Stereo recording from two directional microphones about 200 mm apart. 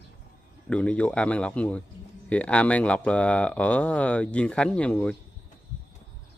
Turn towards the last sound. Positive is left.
turn(degrees=5)  # may be behind; listen again after turning